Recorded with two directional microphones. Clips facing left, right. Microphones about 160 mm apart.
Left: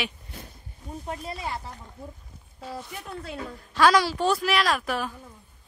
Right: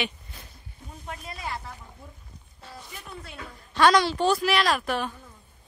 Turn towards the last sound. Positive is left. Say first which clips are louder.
# right 1 dB
turn(degrees=0)  # may be behind; listen again after turning